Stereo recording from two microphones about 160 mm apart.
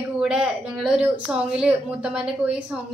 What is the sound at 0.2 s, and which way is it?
Speech, 5° right (ahead or behind).